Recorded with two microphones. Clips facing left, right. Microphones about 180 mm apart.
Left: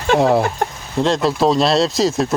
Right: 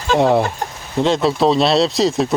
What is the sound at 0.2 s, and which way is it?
Speech, centre (ahead or behind).